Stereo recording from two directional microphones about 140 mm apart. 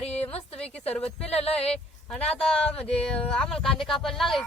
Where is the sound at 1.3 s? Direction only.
45° left (ahead or behind).